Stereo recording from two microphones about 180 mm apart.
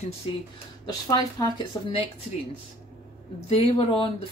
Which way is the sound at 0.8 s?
20° left (ahead or behind).